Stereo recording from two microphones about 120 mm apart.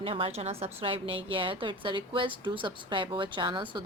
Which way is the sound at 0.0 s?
55° right (ahead or behind).